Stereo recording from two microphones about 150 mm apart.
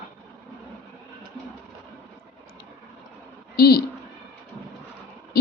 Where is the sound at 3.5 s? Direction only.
90° left.